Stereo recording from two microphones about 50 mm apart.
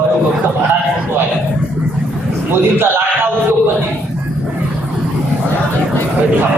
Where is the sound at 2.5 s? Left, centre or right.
Right.